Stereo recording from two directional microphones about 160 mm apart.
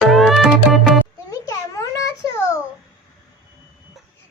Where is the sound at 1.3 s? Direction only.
20° left (ahead or behind).